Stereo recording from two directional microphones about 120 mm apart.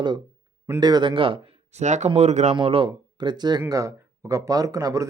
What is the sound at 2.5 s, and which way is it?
Speech, 45° right (ahead or behind).